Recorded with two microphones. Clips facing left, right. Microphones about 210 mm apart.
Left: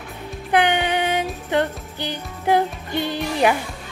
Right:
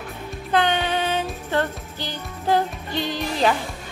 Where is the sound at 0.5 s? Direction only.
15° left (ahead or behind).